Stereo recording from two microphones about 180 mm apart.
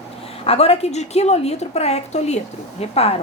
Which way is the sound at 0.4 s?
35° left (ahead or behind).